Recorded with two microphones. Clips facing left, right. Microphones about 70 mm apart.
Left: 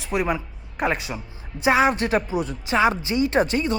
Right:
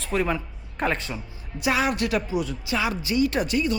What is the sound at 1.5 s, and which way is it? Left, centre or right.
A woman's voice, left.